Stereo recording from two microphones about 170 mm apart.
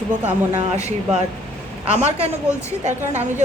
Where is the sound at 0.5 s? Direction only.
40° right (ahead or behind).